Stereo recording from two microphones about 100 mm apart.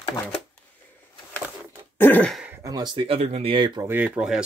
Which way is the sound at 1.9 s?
20° left (ahead or behind).